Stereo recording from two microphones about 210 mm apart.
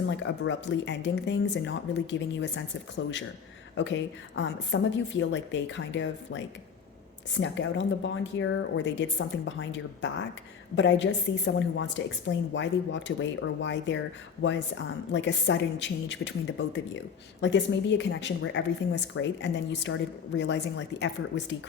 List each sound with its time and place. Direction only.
0.0 s speech: 60° left (ahead or behind)
3.8 s speech: 60° left (ahead or behind)